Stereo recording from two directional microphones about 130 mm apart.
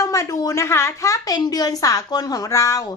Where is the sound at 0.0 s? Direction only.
25° left (ahead or behind).